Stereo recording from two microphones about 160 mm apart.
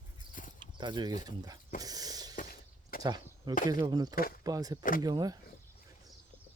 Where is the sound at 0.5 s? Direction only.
30° right (ahead or behind).